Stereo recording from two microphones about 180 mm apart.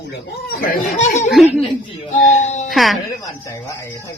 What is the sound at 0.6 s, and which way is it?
Speech, 40° left (ahead or behind).